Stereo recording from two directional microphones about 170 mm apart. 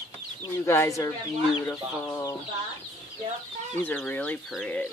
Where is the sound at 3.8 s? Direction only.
10° left (ahead or behind).